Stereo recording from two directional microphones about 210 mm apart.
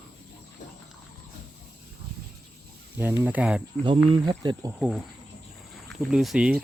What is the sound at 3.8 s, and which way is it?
Speech, 25° right (ahead or behind).